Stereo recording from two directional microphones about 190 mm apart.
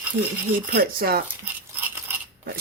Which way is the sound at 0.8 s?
50° right (ahead or behind).